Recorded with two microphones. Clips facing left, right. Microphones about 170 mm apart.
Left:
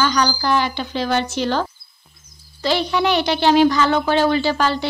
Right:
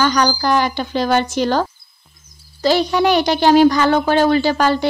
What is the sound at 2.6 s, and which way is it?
A woman's voice, 40° right (ahead or behind).